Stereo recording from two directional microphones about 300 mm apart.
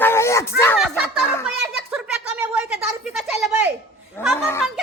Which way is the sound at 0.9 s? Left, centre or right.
Centre.